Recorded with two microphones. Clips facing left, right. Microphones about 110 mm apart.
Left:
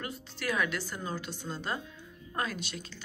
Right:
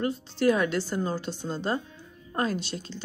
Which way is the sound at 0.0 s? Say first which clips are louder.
Right 13 dB; 30° right (ahead or behind).